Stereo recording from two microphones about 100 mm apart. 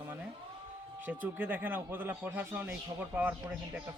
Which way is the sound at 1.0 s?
20° right (ahead or behind).